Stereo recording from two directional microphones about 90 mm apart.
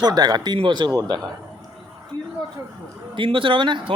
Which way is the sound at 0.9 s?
45° right (ahead or behind).